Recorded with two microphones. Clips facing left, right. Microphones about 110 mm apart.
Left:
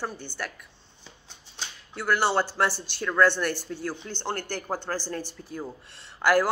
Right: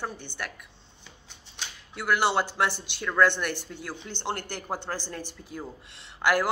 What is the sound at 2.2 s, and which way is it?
Speech, 20° right (ahead or behind).